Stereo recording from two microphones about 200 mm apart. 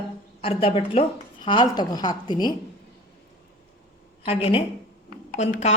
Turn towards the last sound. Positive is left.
turn(degrees=35)  # may be behind; listen again after turning